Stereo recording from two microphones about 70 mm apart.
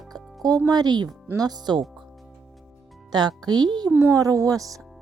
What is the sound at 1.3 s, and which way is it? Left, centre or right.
Speech, right.